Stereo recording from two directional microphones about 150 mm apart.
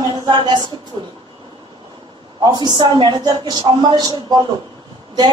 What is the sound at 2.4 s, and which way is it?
A woman's voice, 30° right (ahead or behind).